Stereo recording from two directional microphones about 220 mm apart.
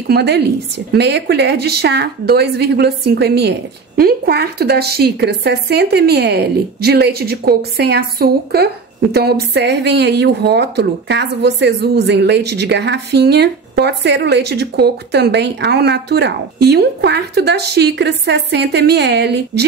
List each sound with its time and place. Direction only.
0.1 s speech: 50° right (ahead or behind)